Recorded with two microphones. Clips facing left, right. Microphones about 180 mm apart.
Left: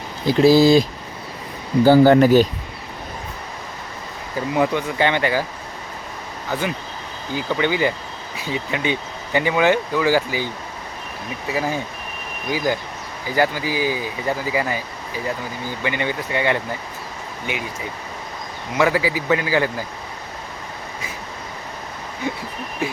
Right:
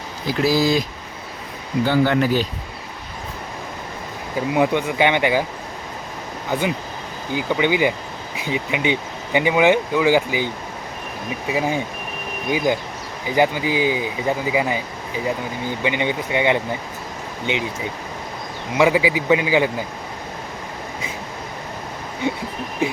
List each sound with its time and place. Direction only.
0.3 s speech: 25° left (ahead or behind); by 2.5 s 45° left (ahead or behind)
4.4 s speech: 15° right (ahead or behind)
6.5 s speech: 15° right (ahead or behind)
15.8 s speech: 15° right (ahead or behind)
18.8 s speech: 15° right (ahead or behind)